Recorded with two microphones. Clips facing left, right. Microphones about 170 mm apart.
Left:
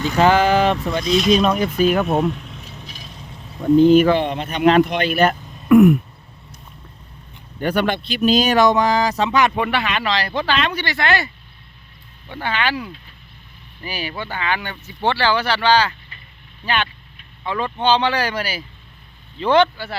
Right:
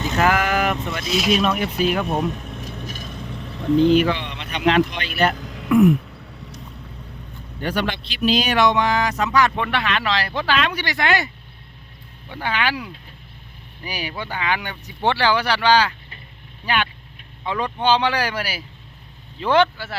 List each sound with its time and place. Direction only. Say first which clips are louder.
0.2 s speech: left 5 dB; 30° left (ahead or behind)
1.0 s speech: left 5 dB; 5° right (ahead or behind)
1.3 s speech: left 2 dB; 35° left (ahead or behind)
2.3 s vehicle: right 3 dB; 45° right (ahead or behind); by 3.6 s 70° right (ahead or behind)
3.8 s speech: left 4 dB; 45° left (ahead or behind)
5.4 s throat clearing: right 6 dB; 85° right
7.6 s speech: left 5 dB; 50° left (ahead or behind); by 9.5 s 25° left (ahead or behind)
9.6 s speech: left 2 dB; 5° left (ahead or behind); by 11.3 s 15° right (ahead or behind)
12.3 s speech: left 1 dB; 10° right (ahead or behind)